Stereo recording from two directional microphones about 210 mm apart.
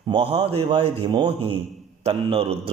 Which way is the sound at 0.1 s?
25° right (ahead or behind).